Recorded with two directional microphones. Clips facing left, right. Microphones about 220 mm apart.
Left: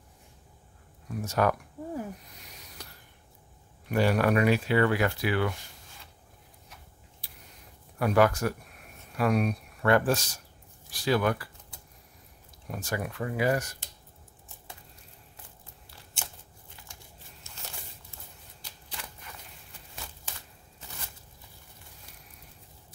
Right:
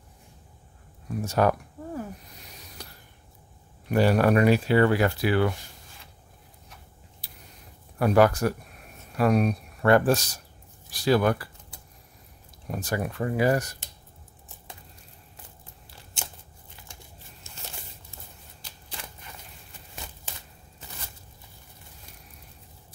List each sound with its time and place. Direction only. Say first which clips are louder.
1.2 s speech: right 3 dB; 30° right (ahead or behind)
3.9 s speech: right 4 dB; 35° right (ahead or behind)
7.2 s a sound: right 3 dB; 35° right (ahead or behind)
8.0 s speech: right 4 dB; 35° right (ahead or behind)
12.7 s speech: right 4 dB; 35° right (ahead or behind)